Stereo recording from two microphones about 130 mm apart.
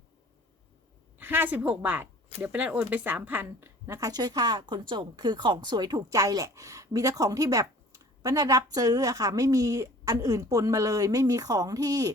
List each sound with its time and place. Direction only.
1.2 s a woman's voice: 15° right (ahead or behind)